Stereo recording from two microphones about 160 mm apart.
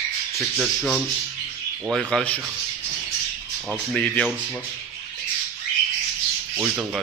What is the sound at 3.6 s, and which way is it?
Speech, 10° left (ahead or behind).